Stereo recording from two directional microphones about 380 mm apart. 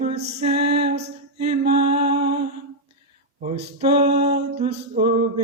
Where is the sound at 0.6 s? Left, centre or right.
Right.